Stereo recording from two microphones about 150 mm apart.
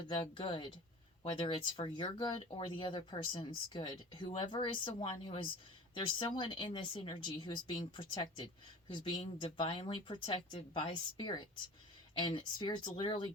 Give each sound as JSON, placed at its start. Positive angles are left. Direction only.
{"t": 0.2, "sound": "speech", "side_deg": 35}